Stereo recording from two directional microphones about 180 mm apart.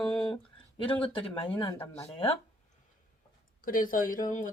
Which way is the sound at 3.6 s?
50° left (ahead or behind).